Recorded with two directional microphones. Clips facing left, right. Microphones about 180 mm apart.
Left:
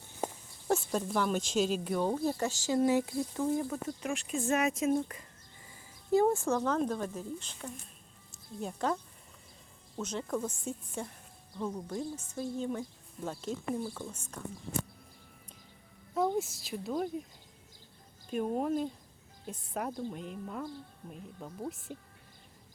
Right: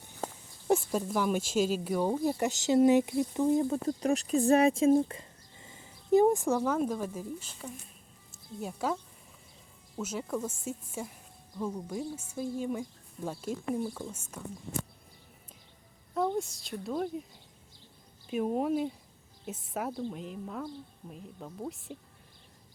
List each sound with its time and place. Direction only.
0.7 s speech: 10° right (ahead or behind)
10.0 s speech: 5° right (ahead or behind)
16.1 s speech: 5° left (ahead or behind)
18.3 s speech: 5° right (ahead or behind)